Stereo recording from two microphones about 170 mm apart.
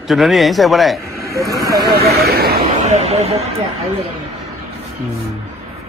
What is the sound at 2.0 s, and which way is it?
Speech, 65° right (ahead or behind).